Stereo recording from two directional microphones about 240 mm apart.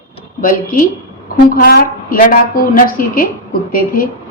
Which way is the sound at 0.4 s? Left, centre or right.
Left.